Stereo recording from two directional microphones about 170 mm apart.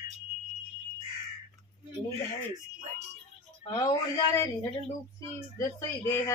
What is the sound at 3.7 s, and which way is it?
Speech, 25° left (ahead or behind).